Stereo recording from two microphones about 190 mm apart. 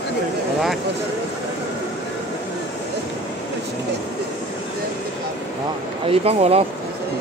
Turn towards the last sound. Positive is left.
turn(degrees=-30)  # may be behind; listen again after turning